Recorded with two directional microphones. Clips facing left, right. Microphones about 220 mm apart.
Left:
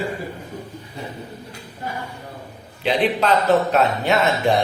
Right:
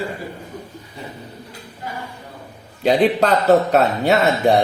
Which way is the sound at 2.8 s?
40° right (ahead or behind).